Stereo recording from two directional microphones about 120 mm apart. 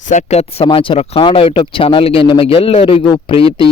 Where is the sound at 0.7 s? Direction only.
45° left (ahead or behind).